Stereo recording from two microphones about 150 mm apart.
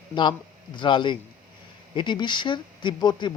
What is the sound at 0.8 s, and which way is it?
A man's voice, 30° left (ahead or behind).